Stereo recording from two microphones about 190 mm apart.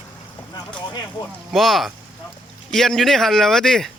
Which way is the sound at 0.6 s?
20° left (ahead or behind).